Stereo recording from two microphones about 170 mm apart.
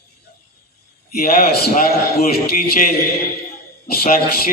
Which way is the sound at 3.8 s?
65° left (ahead or behind).